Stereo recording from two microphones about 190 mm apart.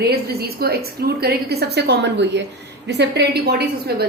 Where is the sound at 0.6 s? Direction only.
55° right (ahead or behind).